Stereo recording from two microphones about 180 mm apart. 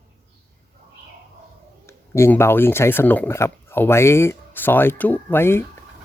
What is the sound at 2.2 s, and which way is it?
Speech, 15° left (ahead or behind).